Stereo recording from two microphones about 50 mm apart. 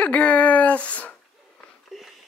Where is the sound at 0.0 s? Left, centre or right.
Left.